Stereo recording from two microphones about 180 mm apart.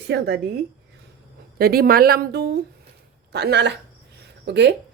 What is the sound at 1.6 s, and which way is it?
A woman's voice, 55° right (ahead or behind).